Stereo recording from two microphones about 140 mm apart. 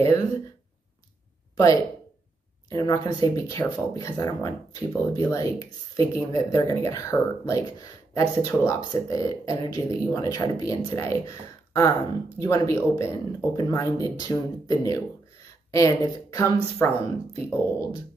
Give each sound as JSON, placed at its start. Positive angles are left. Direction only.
{"t": 2.7, "sound": "speech", "side_deg": 30}